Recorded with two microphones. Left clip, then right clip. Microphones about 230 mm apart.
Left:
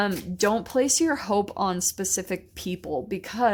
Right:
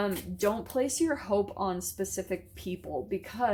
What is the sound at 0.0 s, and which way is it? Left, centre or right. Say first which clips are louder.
Speech: left 5 dB; left.